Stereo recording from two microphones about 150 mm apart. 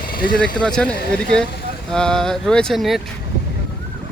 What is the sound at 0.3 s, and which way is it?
Speech, 5° left (ahead or behind).